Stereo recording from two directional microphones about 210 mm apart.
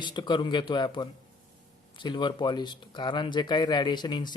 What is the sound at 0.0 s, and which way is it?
Speech, 20° left (ahead or behind).